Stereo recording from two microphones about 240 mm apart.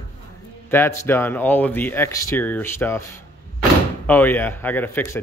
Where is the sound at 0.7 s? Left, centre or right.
Centre.